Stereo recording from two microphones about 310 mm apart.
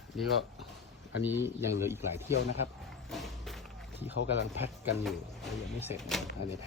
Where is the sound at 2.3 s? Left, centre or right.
Left.